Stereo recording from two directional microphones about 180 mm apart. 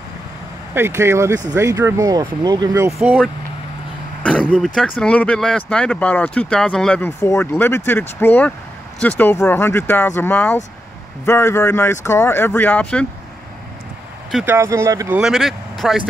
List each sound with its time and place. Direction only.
0.7 s speech: 15° right (ahead or behind)
4.2 s speech: 5° left (ahead or behind)
14.3 s speech: 10° right (ahead or behind)
15.1 s speech: centre (ahead or behind)